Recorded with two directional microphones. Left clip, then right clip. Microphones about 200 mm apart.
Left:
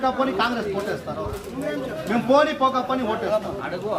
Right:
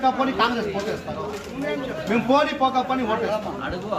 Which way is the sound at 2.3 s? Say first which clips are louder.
Left 2 dB; 10° right (ahead or behind).